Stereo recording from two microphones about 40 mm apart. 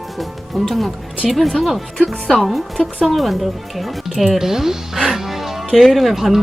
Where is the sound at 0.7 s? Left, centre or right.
Centre.